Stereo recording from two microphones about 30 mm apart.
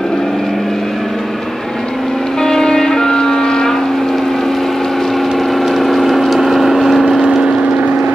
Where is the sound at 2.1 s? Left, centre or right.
Centre.